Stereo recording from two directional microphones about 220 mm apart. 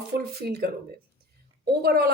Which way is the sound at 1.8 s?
45° right (ahead or behind).